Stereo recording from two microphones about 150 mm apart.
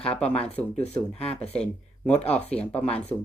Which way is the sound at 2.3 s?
10° left (ahead or behind).